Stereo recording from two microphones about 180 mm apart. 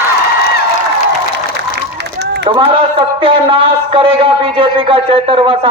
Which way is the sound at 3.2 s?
30° right (ahead or behind).